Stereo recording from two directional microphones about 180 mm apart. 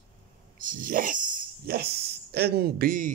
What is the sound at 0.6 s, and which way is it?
Speech, 50° right (ahead or behind).